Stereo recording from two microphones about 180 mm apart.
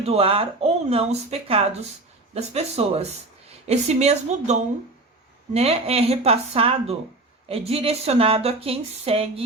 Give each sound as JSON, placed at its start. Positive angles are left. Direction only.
{"t": 0.0, "sound": "speech", "side_deg": -35}
{"t": 5.5, "sound": "speech", "side_deg": -35}